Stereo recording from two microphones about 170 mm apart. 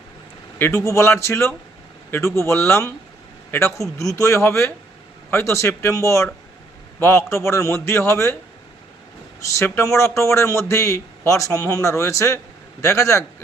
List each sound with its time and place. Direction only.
0.6 s a man's voice: 15° left (ahead or behind)
9.4 s a man's voice: 15° left (ahead or behind)